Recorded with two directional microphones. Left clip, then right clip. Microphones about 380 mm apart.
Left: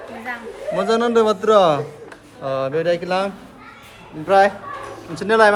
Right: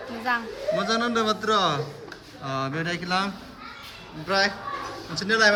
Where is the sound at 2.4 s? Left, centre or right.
Centre.